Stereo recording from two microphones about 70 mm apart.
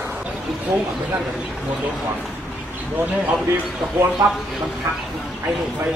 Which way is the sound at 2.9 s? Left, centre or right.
Right.